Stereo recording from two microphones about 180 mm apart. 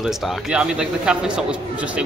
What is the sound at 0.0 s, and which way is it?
Speech, centre (ahead or behind).